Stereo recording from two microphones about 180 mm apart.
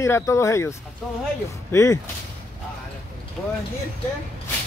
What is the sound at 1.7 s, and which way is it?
Speech, 15° left (ahead or behind).